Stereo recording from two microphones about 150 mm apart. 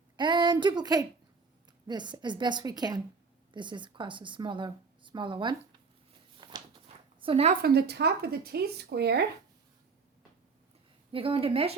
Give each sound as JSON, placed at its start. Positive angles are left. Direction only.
{"t": 0.2, "sound": "a woman's voice", "side_deg": -30}
{"t": 6.3, "sound": "a sound", "side_deg": -30}
{"t": 7.5, "sound": "speech", "side_deg": -90}
{"t": 11.1, "sound": "a woman's voice", "side_deg": -35}